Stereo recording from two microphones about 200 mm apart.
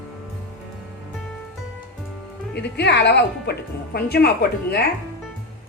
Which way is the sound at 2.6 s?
55° left (ahead or behind).